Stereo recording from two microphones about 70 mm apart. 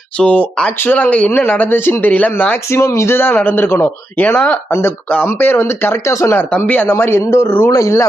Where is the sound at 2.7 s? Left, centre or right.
Left.